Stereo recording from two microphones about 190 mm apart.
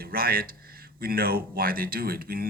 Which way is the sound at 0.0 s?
50° right (ahead or behind).